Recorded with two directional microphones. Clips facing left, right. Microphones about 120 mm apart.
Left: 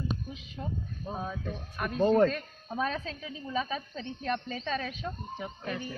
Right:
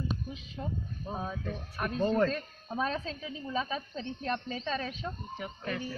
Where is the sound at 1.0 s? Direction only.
Centre (ahead or behind).